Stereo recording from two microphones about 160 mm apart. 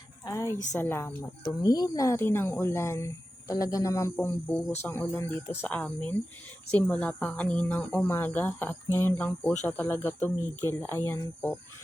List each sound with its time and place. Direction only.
0.8 s speech: 15° left (ahead or behind)